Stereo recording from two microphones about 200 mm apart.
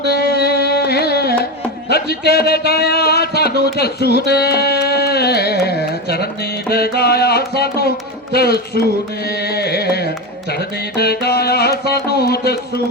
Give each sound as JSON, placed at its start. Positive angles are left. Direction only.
{"t": 0.1, "sound": "carnatic music", "side_deg": 50}
{"t": 1.9, "sound": "speech", "side_deg": 50}